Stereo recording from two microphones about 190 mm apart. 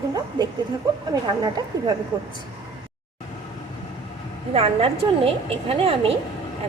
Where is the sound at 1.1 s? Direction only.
20° right (ahead or behind).